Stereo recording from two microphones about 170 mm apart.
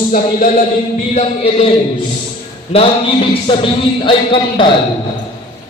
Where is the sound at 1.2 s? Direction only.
35° left (ahead or behind).